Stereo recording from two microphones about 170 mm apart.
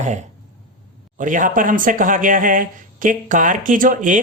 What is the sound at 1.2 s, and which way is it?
Speech, 50° right (ahead or behind).